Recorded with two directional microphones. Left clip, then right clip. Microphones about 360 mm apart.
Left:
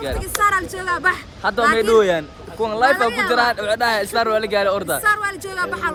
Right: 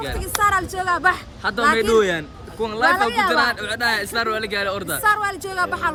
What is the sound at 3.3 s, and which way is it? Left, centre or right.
Speech, centre.